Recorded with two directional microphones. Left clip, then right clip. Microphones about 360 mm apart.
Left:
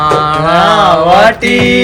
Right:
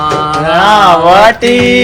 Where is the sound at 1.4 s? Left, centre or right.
Centre.